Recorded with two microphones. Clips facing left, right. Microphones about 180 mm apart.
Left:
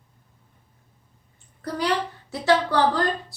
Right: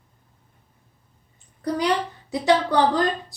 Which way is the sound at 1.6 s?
15° right (ahead or behind).